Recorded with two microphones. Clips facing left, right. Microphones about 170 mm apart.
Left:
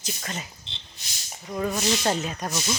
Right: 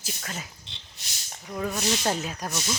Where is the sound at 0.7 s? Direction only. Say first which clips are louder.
Left 2 dB; 25° left (ahead or behind).